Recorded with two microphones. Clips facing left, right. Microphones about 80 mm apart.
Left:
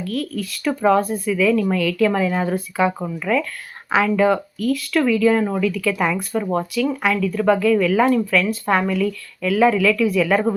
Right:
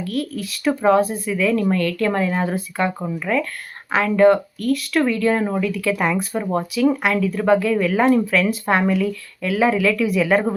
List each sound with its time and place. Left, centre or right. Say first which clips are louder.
0.1 s speech: left 1 dB; centre
3.2 s speech: even; centre
5.3 s speech: left 1 dB; centre